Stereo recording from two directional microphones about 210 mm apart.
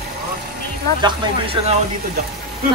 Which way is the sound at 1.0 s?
25° right (ahead or behind).